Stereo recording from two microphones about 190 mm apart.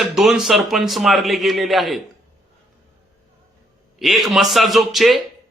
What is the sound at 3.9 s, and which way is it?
Speech, centre (ahead or behind).